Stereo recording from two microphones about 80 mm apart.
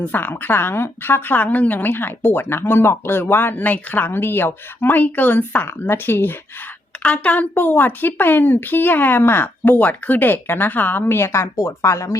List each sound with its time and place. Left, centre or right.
0.1 s speech: left